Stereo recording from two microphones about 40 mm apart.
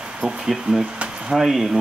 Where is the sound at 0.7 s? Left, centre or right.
Right.